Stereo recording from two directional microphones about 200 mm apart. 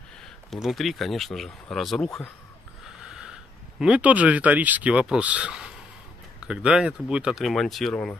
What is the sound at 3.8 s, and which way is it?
Speech, 5° right (ahead or behind).